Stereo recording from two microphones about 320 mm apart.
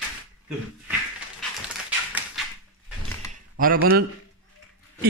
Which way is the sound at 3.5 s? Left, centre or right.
Right.